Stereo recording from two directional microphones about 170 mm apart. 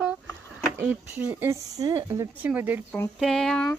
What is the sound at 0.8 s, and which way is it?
Speech, 10° right (ahead or behind).